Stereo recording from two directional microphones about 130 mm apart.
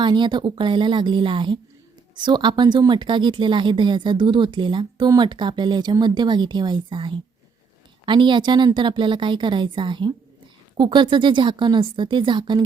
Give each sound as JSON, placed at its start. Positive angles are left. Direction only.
{"t": 0.0, "sound": "a woman's voice", "side_deg": -35}